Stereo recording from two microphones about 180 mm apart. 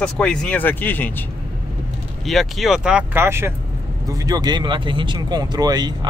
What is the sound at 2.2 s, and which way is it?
Speech, centre (ahead or behind).